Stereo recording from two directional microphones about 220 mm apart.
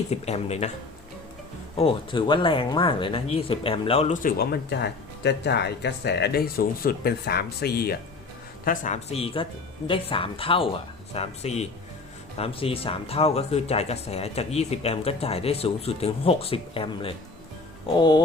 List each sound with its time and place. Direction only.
0.1 s speech: 30° left (ahead or behind)
1.7 s speech: 25° left (ahead or behind)